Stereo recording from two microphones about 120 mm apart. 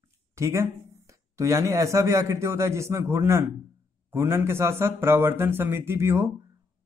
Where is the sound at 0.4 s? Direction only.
25° right (ahead or behind).